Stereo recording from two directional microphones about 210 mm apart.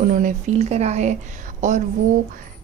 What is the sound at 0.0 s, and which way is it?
Speech, 40° right (ahead or behind).